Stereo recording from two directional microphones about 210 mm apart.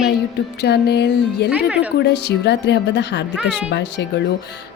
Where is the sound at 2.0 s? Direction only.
55° left (ahead or behind).